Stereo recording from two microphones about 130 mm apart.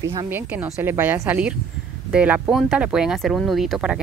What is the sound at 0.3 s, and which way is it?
A woman's voice, 15° right (ahead or behind).